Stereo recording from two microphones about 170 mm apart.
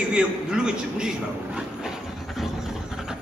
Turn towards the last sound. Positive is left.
turn(degrees=-5)  # may be behind; listen again after turning